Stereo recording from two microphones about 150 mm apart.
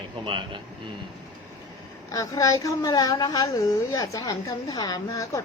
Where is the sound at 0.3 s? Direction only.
35° right (ahead or behind).